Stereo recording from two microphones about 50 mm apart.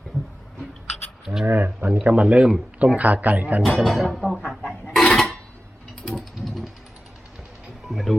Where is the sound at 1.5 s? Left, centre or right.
Right.